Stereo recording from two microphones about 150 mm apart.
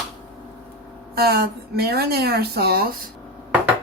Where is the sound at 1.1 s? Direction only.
90° right.